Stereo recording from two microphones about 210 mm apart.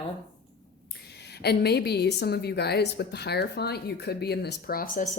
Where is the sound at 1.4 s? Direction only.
50° left (ahead or behind).